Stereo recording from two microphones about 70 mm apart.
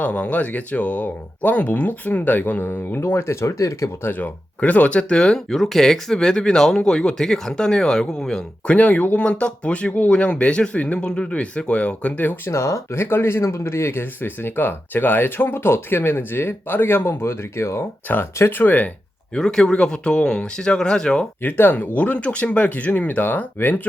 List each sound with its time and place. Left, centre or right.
0.0 s speech: centre; by 4.1 s left
4.1 s speech: left; by 8.4 s centre
8.6 s speech: centre
12.5 s speech: left
19.3 s speech: centre
21.4 s speech: left